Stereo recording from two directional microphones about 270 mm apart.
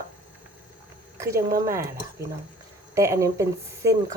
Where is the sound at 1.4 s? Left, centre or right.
Right.